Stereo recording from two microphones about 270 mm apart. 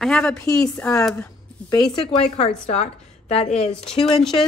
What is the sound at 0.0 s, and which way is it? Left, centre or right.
Speech, centre.